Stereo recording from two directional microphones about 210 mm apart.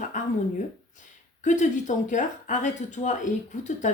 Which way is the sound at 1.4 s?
35° left (ahead or behind).